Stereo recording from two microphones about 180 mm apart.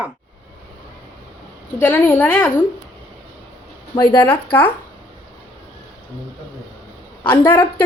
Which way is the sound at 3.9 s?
25° left (ahead or behind).